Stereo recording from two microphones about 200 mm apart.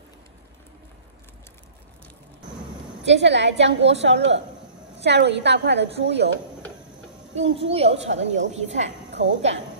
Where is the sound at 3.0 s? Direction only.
60° right (ahead or behind).